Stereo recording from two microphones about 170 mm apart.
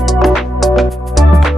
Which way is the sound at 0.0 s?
Centre (ahead or behind).